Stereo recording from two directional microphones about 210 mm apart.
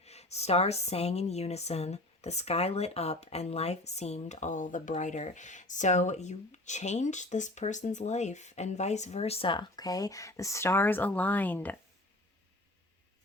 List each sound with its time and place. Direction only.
0.0 s a woman's voice: 30° left (ahead or behind); by 11.8 s 10° left (ahead or behind)